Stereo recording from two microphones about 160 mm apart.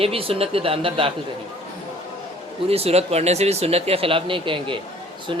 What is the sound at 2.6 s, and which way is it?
Speech, 40° right (ahead or behind).